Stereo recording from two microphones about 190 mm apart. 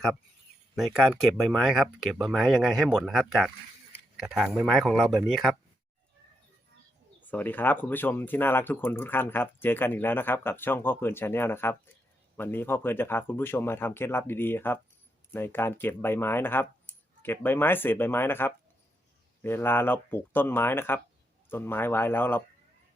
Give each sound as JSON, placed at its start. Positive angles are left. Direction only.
{"t": 0.8, "sound": "speech", "side_deg": 0}
{"t": 7.2, "sound": "speech", "side_deg": 10}